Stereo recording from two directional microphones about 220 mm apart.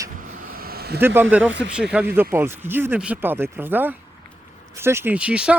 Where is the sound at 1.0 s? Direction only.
10° right (ahead or behind).